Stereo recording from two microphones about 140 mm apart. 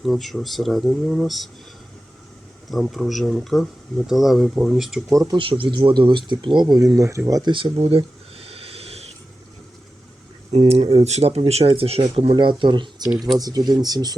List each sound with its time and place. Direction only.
0.0 s speech: centre (ahead or behind)
2.6 s speech: centre (ahead or behind)
5.0 s speech: 25° right (ahead or behind)
5.4 s speech: 40° right (ahead or behind)
7.5 s a sound: 40° right (ahead or behind)
10.5 s speech: 45° right (ahead or behind)
13.1 s speech: centre (ahead or behind)
13.4 s speech: 25° right (ahead or behind)